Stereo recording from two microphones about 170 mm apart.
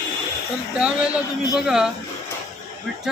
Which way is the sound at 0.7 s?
5° right (ahead or behind).